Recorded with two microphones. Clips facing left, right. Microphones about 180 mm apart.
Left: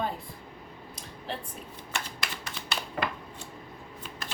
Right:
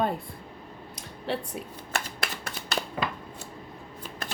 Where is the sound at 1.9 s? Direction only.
55° right (ahead or behind).